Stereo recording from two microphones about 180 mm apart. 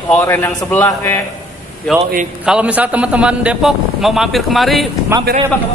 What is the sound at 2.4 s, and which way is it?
A man's voice, 5° right (ahead or behind).